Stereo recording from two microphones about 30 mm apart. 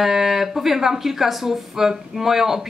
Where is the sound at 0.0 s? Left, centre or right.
Centre.